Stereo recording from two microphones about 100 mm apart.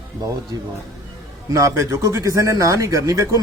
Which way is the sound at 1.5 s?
30° right (ahead or behind).